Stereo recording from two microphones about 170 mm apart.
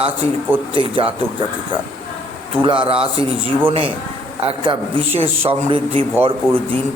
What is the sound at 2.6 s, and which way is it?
A man's voice, 30° right (ahead or behind).